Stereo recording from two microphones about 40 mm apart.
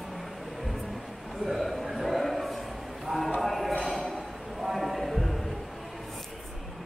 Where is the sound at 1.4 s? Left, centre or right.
Centre.